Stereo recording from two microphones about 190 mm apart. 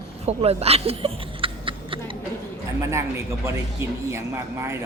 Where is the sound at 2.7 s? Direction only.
15° right (ahead or behind).